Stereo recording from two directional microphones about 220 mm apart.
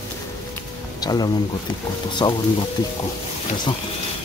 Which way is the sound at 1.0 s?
15° left (ahead or behind).